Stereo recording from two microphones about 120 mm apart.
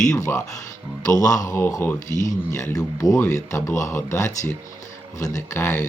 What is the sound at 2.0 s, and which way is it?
Speech, 90° left.